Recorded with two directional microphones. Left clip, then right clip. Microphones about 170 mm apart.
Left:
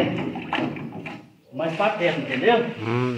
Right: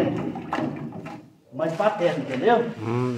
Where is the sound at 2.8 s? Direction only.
Centre (ahead or behind).